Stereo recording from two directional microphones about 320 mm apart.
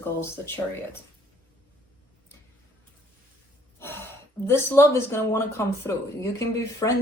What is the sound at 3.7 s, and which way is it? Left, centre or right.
Speech, centre.